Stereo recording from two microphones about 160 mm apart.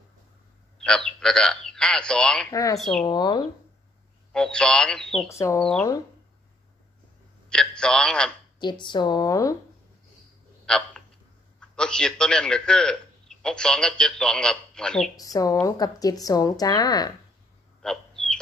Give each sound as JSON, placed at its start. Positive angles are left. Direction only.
{"t": 0.7, "sound": "speech", "side_deg": 5}
{"t": 2.5, "sound": "speech", "side_deg": 20}
{"t": 2.8, "sound": "speech", "side_deg": 5}
{"t": 3.1, "sound": "speech", "side_deg": 25}
{"t": 4.3, "sound": "speech", "side_deg": 5}
{"t": 5.3, "sound": "speech", "side_deg": 20}
{"t": 5.6, "sound": "speech", "side_deg": 5}
{"t": 7.4, "sound": "speech", "side_deg": 5}
{"t": 8.5, "sound": "speech", "side_deg": 30}
{"t": 10.6, "sound": "a man's voice", "side_deg": 5}
{"t": 15.1, "sound": "speech", "side_deg": 20}
{"t": 17.8, "sound": "bird", "side_deg": 5}